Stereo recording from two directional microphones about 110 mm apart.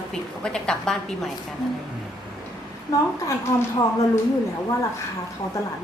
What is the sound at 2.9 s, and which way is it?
Speech, 30° left (ahead or behind).